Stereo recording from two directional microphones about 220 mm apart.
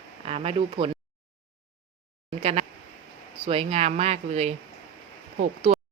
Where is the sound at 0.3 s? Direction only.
25° right (ahead or behind).